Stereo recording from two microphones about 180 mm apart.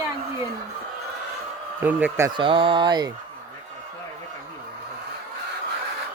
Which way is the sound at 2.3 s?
30° right (ahead or behind).